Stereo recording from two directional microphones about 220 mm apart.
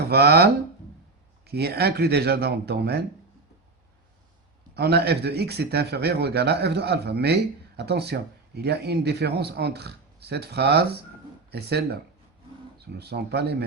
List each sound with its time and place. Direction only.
0.1 s speech: 45° right (ahead or behind)
4.7 s speech: 50° right (ahead or behind)